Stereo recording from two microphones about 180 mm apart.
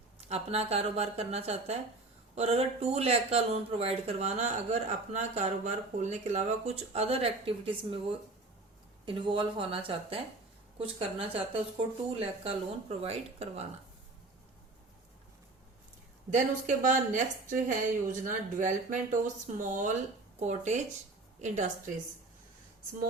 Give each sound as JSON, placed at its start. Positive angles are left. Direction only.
{"t": 0.2, "sound": "speech", "side_deg": -35}
{"t": 9.0, "sound": "speech", "side_deg": -30}
{"t": 16.3, "sound": "a woman's voice", "side_deg": -45}